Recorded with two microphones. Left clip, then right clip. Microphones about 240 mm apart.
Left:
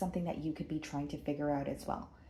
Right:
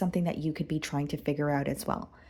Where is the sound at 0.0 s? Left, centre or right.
Right.